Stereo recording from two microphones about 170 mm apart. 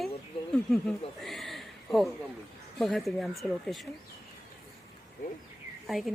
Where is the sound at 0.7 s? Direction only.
Centre (ahead or behind).